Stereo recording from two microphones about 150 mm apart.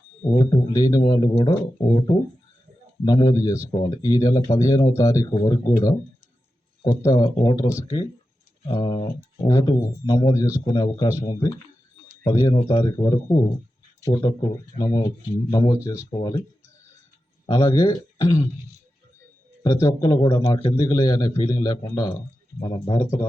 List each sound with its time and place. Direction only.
0.3 s speech: 25° left (ahead or behind)
3.0 s speech: 25° left (ahead or behind)
8.6 s speech: 40° left (ahead or behind)
9.4 s speech: 20° left (ahead or behind)
16.0 s speech: 35° left (ahead or behind)
17.4 s speech: 25° left (ahead or behind)
19.6 s speech: 20° left (ahead or behind)